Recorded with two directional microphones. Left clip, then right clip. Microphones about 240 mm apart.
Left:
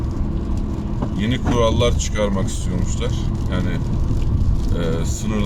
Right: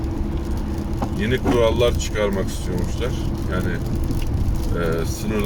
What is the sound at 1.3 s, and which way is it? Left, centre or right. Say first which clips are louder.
Speech: right 1 dB; centre.